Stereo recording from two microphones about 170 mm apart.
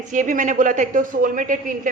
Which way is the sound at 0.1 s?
45° right (ahead or behind).